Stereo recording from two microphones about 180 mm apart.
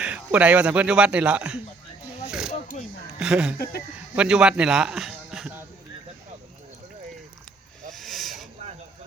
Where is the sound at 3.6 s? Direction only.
60° left (ahead or behind).